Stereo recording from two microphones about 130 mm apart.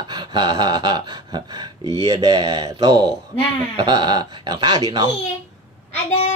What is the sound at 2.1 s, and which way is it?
Speech, 30° right (ahead or behind).